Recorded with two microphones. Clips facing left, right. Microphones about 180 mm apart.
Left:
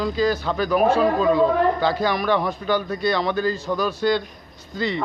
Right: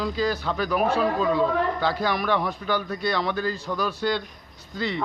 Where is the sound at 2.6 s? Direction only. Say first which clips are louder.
Left 4 dB; centre (ahead or behind).